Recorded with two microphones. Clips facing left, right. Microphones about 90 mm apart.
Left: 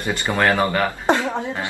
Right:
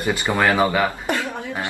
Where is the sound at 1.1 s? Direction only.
25° left (ahead or behind).